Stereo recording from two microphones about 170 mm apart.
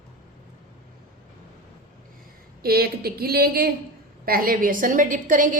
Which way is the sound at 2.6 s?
65° right (ahead or behind).